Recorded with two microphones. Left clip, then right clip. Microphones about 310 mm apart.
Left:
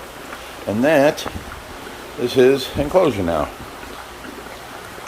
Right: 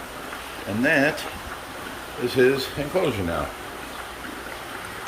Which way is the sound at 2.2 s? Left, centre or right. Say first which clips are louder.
Left 5 dB; centre.